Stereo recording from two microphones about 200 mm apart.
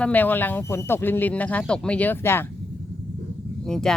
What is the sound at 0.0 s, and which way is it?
Speech, 10° left (ahead or behind).